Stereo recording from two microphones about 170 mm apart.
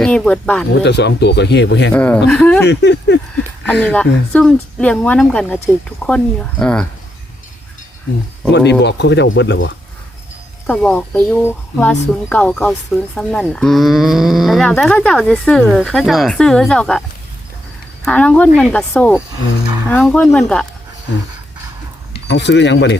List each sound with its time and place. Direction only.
0.0 s speech: 5° left (ahead or behind)
0.7 s speech: 85° left
1.9 s a woman's voice: 10° left (ahead or behind)
2.6 s speech: 90° left
3.8 s a woman's voice: 5° left (ahead or behind)
8.8 s speech: 85° left
10.7 s speech: 10° left (ahead or behind)
18.0 s a woman's voice: 10° left (ahead or behind)
22.3 s speech: 90° left